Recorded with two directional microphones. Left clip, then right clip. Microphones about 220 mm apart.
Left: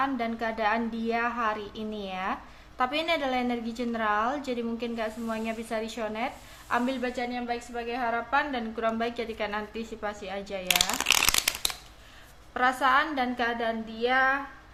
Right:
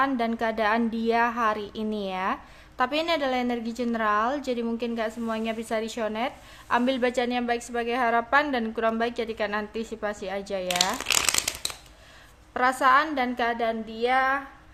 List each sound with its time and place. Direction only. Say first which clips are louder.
0.0 s a woman's voice: right 4 dB; 20° right (ahead or behind)
10.7 s shuffling cards: left 1 dB; 15° left (ahead or behind)
12.5 s a woman's voice: right 3 dB; 20° right (ahead or behind)